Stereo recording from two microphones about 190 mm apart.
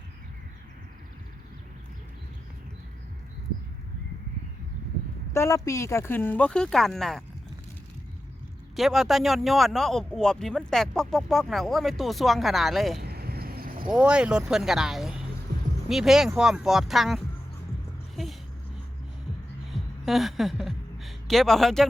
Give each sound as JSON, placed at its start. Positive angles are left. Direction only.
{"t": 5.3, "sound": "speech", "side_deg": 15}
{"t": 8.7, "sound": "speech", "side_deg": 0}
{"t": 13.0, "sound": "vehicle", "side_deg": -55}
{"t": 13.8, "sound": "speech", "side_deg": -5}
{"t": 18.2, "sound": "a sound", "side_deg": 0}
{"t": 19.7, "sound": "a sound", "side_deg": 0}